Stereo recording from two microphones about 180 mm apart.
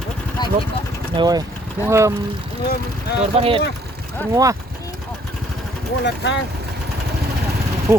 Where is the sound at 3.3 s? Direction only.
30° right (ahead or behind).